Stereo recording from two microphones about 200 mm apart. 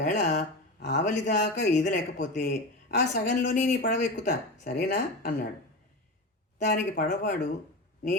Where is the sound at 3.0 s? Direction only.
65° left (ahead or behind).